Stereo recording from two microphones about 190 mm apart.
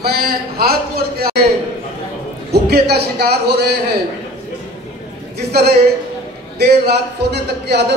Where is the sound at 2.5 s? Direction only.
55° right (ahead or behind).